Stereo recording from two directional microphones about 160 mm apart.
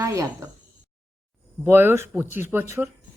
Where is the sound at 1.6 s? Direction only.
15° right (ahead or behind).